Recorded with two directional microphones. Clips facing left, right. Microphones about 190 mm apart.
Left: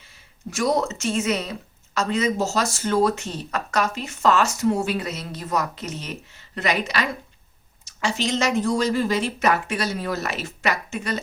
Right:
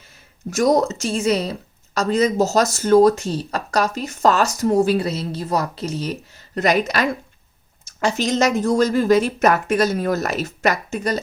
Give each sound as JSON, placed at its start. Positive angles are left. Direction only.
{"t": 0.5, "sound": "speech", "side_deg": -40}